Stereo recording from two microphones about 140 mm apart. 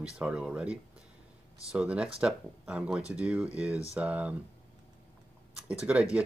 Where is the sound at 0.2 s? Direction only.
5° right (ahead or behind).